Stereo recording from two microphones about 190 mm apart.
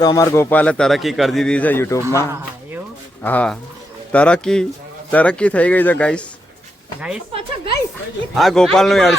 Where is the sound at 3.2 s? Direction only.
10° left (ahead or behind).